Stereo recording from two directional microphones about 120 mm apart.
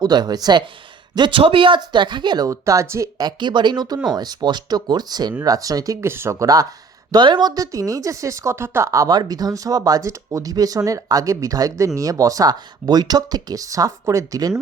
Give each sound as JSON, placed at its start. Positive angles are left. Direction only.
{"t": 0.0, "sound": "speech", "side_deg": -35}
{"t": 7.1, "sound": "speech", "side_deg": -40}